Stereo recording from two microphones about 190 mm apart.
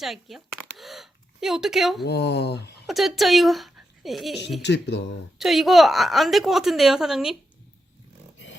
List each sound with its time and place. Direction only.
0.0 s speech: centre (ahead or behind)
2.0 s speech: 60° left (ahead or behind)
2.8 s speech: centre (ahead or behind)
4.6 s speech: 65° left (ahead or behind)
5.4 s speech: centre (ahead or behind)